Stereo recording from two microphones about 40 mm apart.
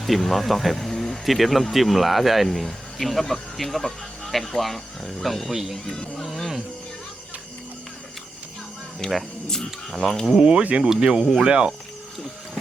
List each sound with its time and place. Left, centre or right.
0.0 s speech: centre
5.7 s speech: centre
6.2 s music: centre
9.0 s speech: centre
10.4 s speech: right
11.0 s speech: centre